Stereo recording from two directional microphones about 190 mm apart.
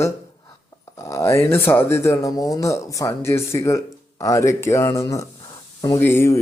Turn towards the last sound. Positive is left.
turn(degrees=15)  # may be behind; listen again after turning